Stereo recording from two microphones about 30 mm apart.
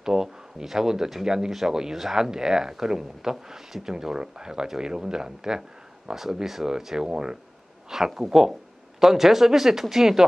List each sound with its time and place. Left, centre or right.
0.0 s speech: centre
1.5 s speech: centre; by 7.3 s right
8.1 s speech: centre